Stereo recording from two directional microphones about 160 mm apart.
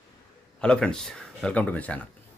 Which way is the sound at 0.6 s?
5° left (ahead or behind).